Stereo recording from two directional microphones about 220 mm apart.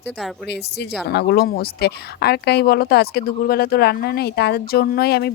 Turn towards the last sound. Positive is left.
turn(degrees=45)  # may be behind; listen again after turning